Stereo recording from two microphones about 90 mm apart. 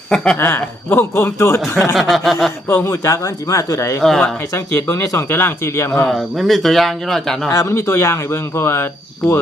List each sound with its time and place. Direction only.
0.3 s speech: 30° left (ahead or behind)
1.7 s speech: 15° left (ahead or behind)
2.0 s a man's voice: centre (ahead or behind)
2.6 s speech: 30° left (ahead or behind)
4.0 s a man's voice: 5° left (ahead or behind)
4.5 s speech: 30° left (ahead or behind)
6.1 s a man's voice: centre (ahead or behind)
7.5 s speech: 35° left (ahead or behind)